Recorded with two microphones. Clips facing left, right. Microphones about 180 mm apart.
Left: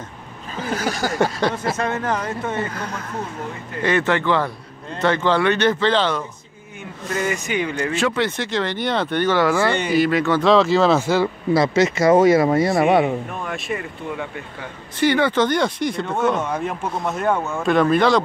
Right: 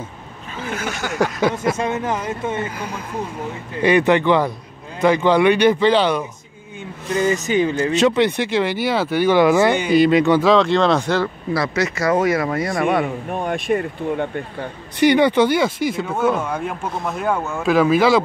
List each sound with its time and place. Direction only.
0.7 s speech: 35° left (ahead or behind)
1.1 s speech: centre (ahead or behind)
1.8 s speech: 10° right (ahead or behind)
7.1 s speech: 25° right (ahead or behind)
7.3 s speech: 40° right (ahead or behind)
7.7 s speech: 20° right (ahead or behind)
10.4 s speech: centre (ahead or behind)
11.5 s speech: 25° left (ahead or behind)
13.5 s speech: 50° right (ahead or behind)
14.1 s speech: 35° right (ahead or behind)
15.0 s speech: 15° right (ahead or behind)